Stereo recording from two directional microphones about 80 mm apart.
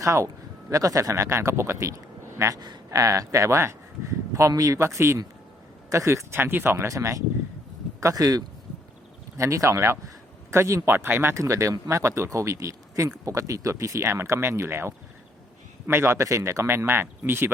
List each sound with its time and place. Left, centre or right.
0.0 s speech: right
2.6 s speech: right
2.9 s speech: right
9.4 s speech: right
10.8 s speech: right